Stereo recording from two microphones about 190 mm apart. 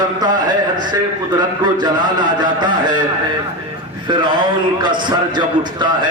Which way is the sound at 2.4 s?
25° right (ahead or behind).